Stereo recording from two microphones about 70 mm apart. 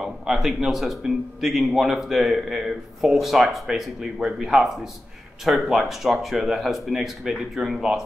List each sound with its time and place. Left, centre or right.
0.0 s a man's voice: centre